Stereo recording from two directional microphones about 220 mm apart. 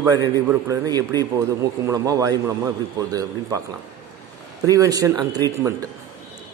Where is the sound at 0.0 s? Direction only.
15° right (ahead or behind).